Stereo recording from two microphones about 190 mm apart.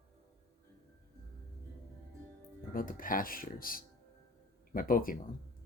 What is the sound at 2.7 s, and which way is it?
Speech, 45° left (ahead or behind).